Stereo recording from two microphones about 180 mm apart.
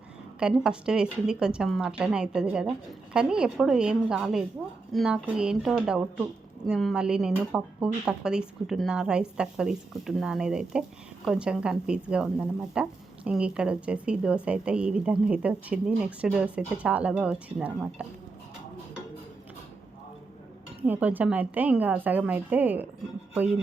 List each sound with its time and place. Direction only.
0.3 s a woman's voice: 5° right (ahead or behind)
20.8 s a woman's voice: 10° right (ahead or behind)